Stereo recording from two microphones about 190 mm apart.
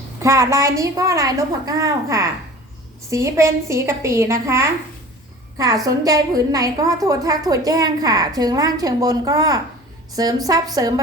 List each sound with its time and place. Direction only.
0.2 s a woman's voice: 15° right (ahead or behind)